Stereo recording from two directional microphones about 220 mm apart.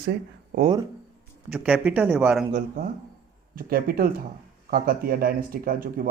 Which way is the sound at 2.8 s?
40° right (ahead or behind).